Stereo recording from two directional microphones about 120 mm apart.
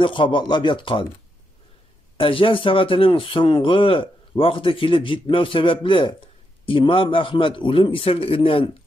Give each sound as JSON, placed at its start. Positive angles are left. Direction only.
{"t": 0.0, "sound": "speech", "side_deg": 45}
{"t": 2.1, "sound": "speech", "side_deg": 45}